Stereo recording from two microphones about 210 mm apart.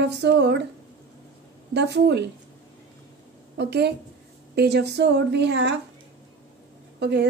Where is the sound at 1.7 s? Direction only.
55° right (ahead or behind).